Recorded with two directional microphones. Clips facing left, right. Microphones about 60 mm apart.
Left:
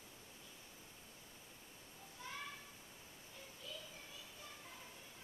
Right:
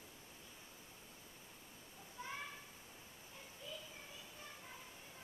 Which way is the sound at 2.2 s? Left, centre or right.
Right.